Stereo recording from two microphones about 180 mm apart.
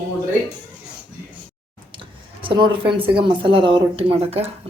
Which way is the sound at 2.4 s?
25° right (ahead or behind).